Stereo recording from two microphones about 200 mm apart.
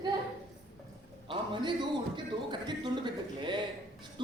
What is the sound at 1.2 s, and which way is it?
A man's voice, 25° right (ahead or behind).